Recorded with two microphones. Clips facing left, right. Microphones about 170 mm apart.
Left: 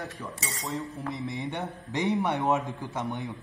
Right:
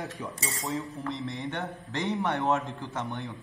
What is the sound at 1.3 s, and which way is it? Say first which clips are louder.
A man's voice: left 1 dB; 15° left (ahead or behind).